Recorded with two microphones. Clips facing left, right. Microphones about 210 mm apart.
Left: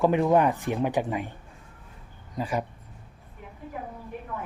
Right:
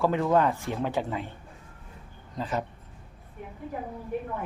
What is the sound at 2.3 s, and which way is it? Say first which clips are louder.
Speech: left 2 dB; 10° left (ahead or behind).